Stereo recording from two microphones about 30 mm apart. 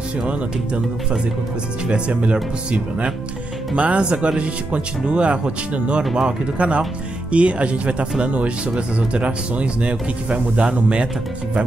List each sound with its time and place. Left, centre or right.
1.9 s speech: right
3.7 s speech: right
4.0 s speech: right